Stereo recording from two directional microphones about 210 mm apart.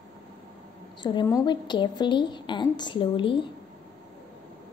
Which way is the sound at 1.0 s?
20° left (ahead or behind).